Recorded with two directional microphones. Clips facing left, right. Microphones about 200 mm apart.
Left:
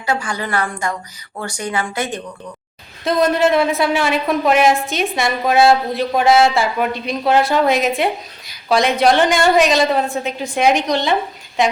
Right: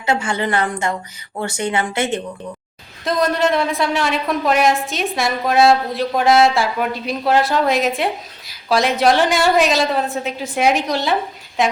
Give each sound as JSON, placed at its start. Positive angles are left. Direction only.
{"t": 0.0, "sound": "a woman's voice", "side_deg": -25}
{"t": 3.0, "sound": "a woman's voice", "side_deg": 0}